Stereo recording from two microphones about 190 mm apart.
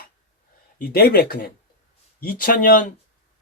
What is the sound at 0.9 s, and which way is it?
Speech, 55° left (ahead or behind).